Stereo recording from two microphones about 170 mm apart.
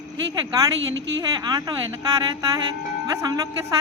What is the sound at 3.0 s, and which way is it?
Speech, 20° right (ahead or behind).